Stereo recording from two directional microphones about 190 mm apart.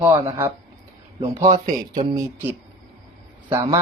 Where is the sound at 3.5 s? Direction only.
15° right (ahead or behind).